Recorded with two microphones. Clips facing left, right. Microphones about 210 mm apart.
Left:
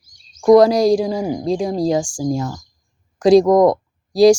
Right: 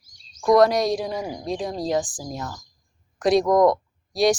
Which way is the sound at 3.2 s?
25° left (ahead or behind).